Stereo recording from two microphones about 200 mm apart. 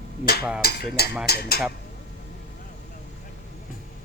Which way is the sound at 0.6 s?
50° left (ahead or behind).